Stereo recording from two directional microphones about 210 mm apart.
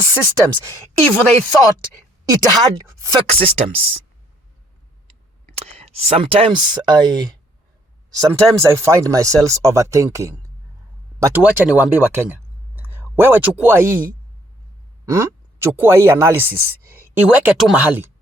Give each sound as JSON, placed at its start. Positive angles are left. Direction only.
{"t": 0.1, "sound": "speech", "side_deg": -20}
{"t": 0.7, "sound": "a woman's voice", "side_deg": 5}
{"t": 2.6, "sound": "speech", "side_deg": -15}
{"t": 3.2, "sound": "speech", "side_deg": -30}
{"t": 5.5, "sound": "speech", "side_deg": -30}
{"t": 15.0, "sound": "speech", "side_deg": -15}